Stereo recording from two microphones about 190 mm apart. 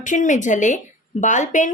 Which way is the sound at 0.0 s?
40° left (ahead or behind).